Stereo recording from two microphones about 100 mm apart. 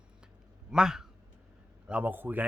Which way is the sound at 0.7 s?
5° right (ahead or behind).